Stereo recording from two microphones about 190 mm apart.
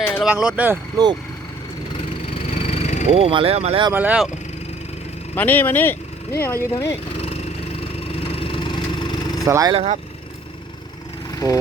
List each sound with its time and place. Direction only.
0.2 s speech: 5° right (ahead or behind)
2.6 s vehicle: 30° left (ahead or behind)
3.1 s speech: 30° right (ahead or behind)
3.9 s speech: 10° right (ahead or behind)
5.3 s speech: 10° left (ahead or behind)
7.2 s vehicle: 35° left (ahead or behind)
9.5 s speech: 20° right (ahead or behind)
9.7 s speech: 35° right (ahead or behind)
11.3 s speech: 20° left (ahead or behind)